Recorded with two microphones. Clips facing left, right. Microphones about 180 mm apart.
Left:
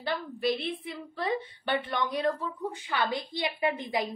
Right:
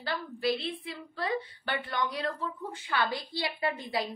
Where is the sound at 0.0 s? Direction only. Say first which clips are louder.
Left 2 dB; 20° left (ahead or behind).